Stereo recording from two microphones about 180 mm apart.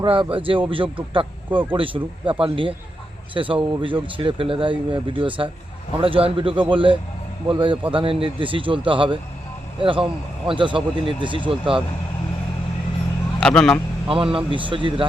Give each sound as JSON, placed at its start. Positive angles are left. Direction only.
{"t": 0.0, "sound": "speech", "side_deg": -30}
{"t": 13.4, "sound": "speech", "side_deg": 5}
{"t": 14.1, "sound": "speech", "side_deg": -30}